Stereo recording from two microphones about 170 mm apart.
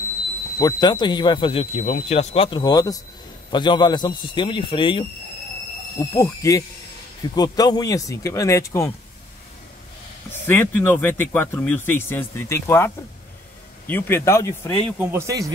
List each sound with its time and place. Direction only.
0.6 s speech: 25° left (ahead or behind)
5.9 s speech: 20° left (ahead or behind)
10.4 s speech: 15° left (ahead or behind)
15.0 s speech: 15° right (ahead or behind)